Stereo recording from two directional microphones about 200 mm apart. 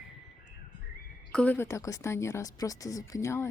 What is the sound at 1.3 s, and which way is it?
Speech, 5° left (ahead or behind).